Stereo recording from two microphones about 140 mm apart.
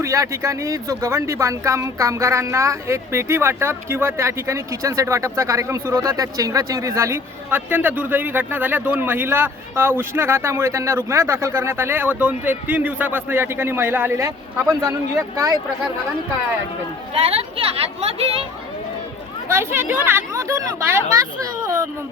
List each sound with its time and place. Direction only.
0.0 s speech: 20° right (ahead or behind)
17.2 s speech: 45° right (ahead or behind)
19.5 s speech: 15° right (ahead or behind)